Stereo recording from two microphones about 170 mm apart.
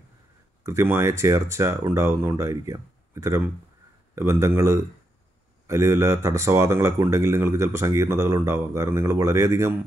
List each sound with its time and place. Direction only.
0.7 s speech: 15° right (ahead or behind)